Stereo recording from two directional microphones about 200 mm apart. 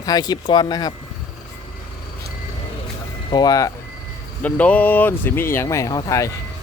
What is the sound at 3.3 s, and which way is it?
Speech, 20° left (ahead or behind).